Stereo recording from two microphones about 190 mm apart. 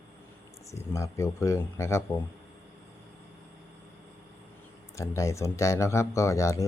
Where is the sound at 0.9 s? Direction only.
15° left (ahead or behind).